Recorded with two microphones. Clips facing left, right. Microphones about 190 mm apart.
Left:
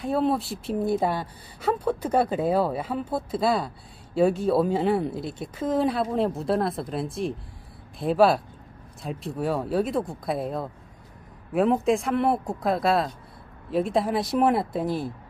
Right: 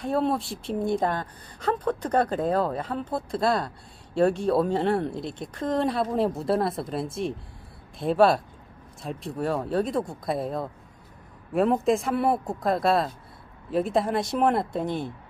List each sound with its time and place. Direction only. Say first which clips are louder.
0.0 s speech: left 1 dB; centre (ahead or behind)